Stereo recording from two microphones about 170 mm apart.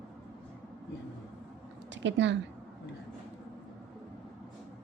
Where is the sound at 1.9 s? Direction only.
90° right.